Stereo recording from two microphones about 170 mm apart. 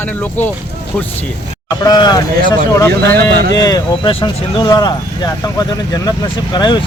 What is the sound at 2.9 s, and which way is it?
Speech, 70° right (ahead or behind).